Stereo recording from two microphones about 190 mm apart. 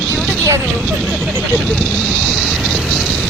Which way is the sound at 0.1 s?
5° left (ahead or behind).